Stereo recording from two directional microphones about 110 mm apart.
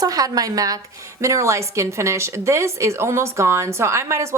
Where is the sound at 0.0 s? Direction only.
35° right (ahead or behind).